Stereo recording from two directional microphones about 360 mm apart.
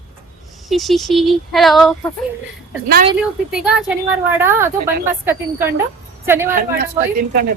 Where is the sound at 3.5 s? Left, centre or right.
Centre.